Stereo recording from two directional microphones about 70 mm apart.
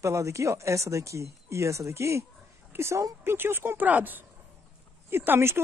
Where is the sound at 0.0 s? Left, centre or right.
Right.